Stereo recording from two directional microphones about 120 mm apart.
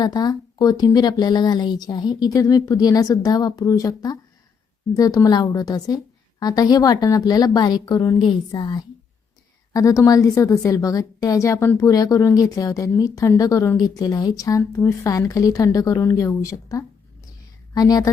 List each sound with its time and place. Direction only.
0.0 s a woman's voice: 35° left (ahead or behind)